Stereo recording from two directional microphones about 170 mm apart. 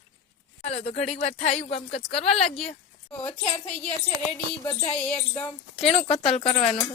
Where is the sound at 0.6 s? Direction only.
40° left (ahead or behind).